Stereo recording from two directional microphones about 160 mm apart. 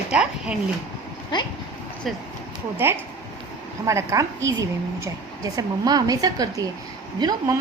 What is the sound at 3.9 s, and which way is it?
A woman's voice, 20° right (ahead or behind).